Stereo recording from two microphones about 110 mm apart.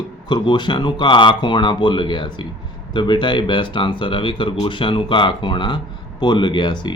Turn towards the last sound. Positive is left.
turn(degrees=45)  # may be behind; listen again after turning